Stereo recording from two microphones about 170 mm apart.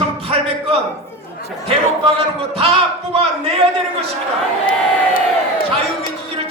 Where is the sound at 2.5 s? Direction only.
35° right (ahead or behind).